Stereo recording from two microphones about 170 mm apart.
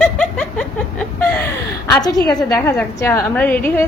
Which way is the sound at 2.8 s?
15° left (ahead or behind).